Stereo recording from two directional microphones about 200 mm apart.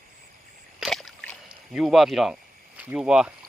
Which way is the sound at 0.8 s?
Centre (ahead or behind).